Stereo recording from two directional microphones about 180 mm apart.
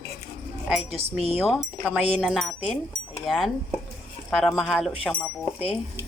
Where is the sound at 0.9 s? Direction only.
35° right (ahead or behind).